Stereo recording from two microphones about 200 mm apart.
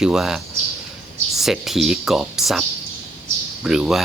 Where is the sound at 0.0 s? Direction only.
5° right (ahead or behind).